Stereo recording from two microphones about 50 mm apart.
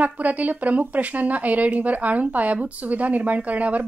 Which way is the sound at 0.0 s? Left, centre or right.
Right.